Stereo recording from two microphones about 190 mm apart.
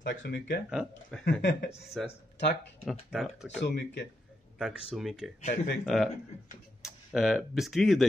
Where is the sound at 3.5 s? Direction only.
65° left (ahead or behind).